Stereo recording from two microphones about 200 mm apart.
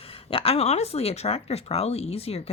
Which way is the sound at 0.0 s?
30° left (ahead or behind).